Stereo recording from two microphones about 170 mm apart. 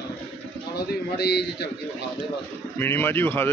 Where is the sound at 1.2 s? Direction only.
75° left (ahead or behind).